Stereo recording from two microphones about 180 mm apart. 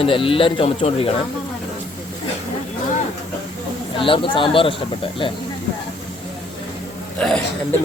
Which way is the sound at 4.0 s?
30° left (ahead or behind).